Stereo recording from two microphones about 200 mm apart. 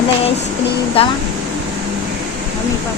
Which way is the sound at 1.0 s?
30° left (ahead or behind).